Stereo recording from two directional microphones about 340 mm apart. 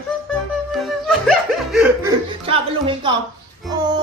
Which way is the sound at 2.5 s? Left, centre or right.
Centre.